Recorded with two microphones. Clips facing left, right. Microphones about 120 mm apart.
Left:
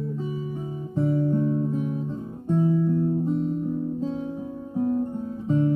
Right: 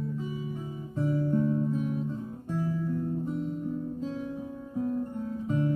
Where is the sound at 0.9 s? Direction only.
25° left (ahead or behind).